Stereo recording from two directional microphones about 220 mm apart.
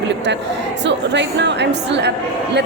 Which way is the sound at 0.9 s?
55° right (ahead or behind).